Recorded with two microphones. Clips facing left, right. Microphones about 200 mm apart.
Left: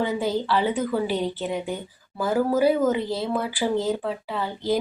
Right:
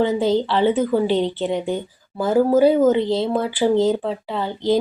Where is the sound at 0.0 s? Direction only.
25° right (ahead or behind).